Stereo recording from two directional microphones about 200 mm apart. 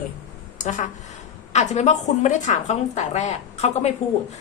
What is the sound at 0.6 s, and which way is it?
A woman's voice, 40° left (ahead or behind).